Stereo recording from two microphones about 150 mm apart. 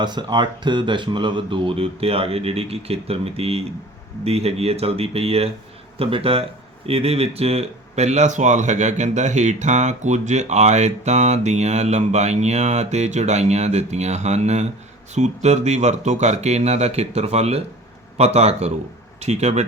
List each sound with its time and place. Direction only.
0.0 s speech: 30° right (ahead or behind); by 19.6 s 45° right (ahead or behind)